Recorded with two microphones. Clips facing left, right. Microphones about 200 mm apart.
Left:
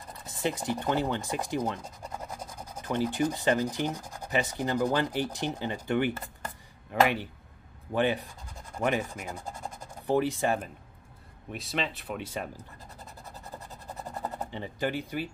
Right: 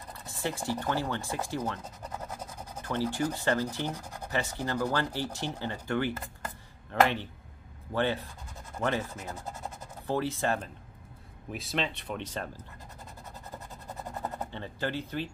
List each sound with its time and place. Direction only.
0.3 s speech: 20° left (ahead or behind)
2.3 s a sound: 5° right (ahead or behind)
2.8 s speech: 15° left (ahead or behind)
11.5 s speech: centre (ahead or behind)
14.5 s speech: 15° left (ahead or behind)